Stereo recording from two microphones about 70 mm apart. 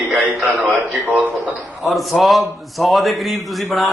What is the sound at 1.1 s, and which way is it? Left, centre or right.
Speech, right.